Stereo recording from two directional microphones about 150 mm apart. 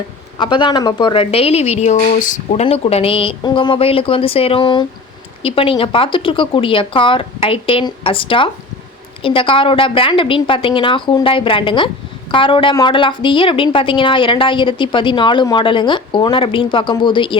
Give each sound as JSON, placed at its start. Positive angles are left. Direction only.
{"t": 0.3, "sound": "a woman's voice", "side_deg": 30}
{"t": 2.5, "sound": "a woman's voice", "side_deg": 45}